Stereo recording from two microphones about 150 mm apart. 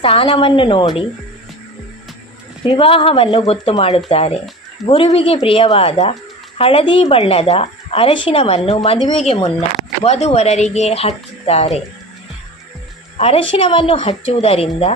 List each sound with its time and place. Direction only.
0.0 s a woman's voice: 35° left (ahead or behind)
2.6 s a woman's voice: 35° left (ahead or behind)
13.1 s a woman's voice: 40° left (ahead or behind)